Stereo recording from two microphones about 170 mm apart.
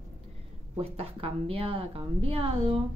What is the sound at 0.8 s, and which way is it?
Speech, 35° right (ahead or behind).